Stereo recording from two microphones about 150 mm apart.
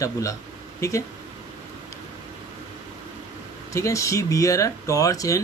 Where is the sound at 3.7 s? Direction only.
20° left (ahead or behind).